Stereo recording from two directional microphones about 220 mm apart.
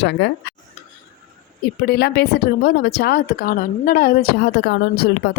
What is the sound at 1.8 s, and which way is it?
Speech, 45° left (ahead or behind).